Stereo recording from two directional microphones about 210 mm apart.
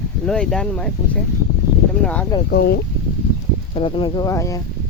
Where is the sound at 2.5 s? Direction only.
50° left (ahead or behind).